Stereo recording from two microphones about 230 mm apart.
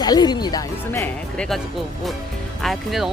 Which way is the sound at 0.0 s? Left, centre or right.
Centre.